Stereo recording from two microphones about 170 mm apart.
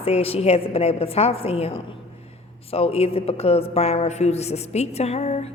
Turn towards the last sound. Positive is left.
turn(degrees=40)  # may be behind; listen again after turning